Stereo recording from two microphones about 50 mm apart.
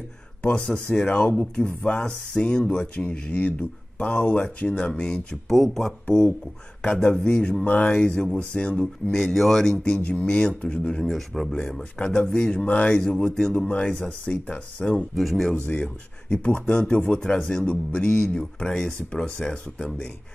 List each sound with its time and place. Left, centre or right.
0.4 s speech: left
5.5 s speech: centre
7.6 s speech: left
9.1 s speech: centre
9.9 s speech: left
10.2 s speech: centre
11.0 s speech: centre
11.5 s speech: centre
13.9 s speech: left
15.1 s speech: centre
15.7 s speech: centre